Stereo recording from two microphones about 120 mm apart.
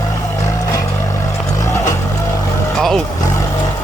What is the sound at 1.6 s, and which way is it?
Vehicle, 25° left (ahead or behind).